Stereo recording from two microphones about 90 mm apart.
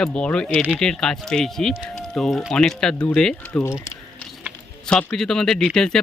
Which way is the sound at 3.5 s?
30° left (ahead or behind).